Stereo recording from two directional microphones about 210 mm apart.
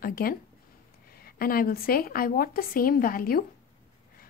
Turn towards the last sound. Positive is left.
turn(degrees=45)  # may be behind; listen again after turning